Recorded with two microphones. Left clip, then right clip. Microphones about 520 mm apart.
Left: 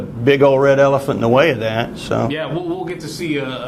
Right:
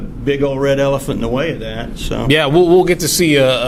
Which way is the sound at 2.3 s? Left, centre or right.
Right.